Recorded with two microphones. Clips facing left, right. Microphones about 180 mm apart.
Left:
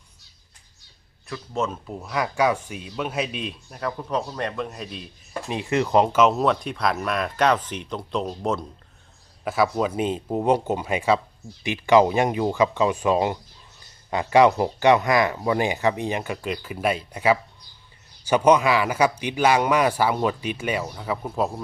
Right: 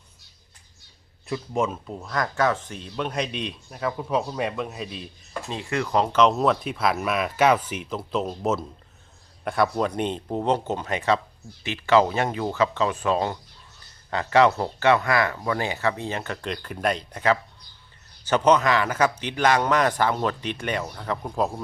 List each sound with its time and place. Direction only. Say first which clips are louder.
1.3 s speech: right 2 dB; 10° right (ahead or behind)
1.9 s speech: left 1 dB; 10° left (ahead or behind)
5.5 s speech: left 4 dB; 20° left (ahead or behind)
6.1 s speech: left 1 dB; 5° left (ahead or behind)